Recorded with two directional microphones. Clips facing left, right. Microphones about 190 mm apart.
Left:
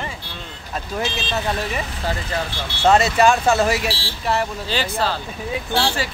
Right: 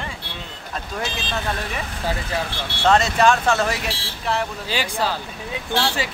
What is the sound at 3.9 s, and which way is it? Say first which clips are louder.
Speech: left 3 dB; 30° left (ahead or behind).